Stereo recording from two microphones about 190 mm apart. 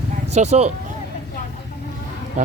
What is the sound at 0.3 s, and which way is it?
Speech, 35° right (ahead or behind).